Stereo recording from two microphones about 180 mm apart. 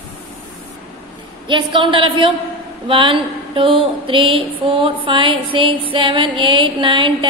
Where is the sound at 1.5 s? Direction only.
25° right (ahead or behind).